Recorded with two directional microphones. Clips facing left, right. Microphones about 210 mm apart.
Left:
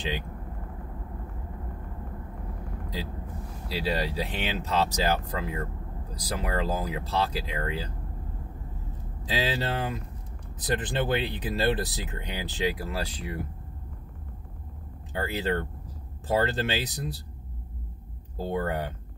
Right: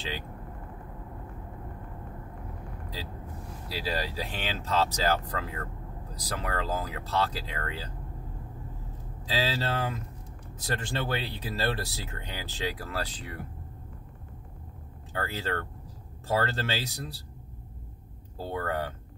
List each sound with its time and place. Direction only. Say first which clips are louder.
3.6 s speech: left 4 dB; 20° left (ahead or behind)
9.3 s speech: left 1 dB; 15° left (ahead or behind)
15.1 s speech: left 4 dB; 15° left (ahead or behind)
18.4 s speech: left 3 dB; 15° left (ahead or behind)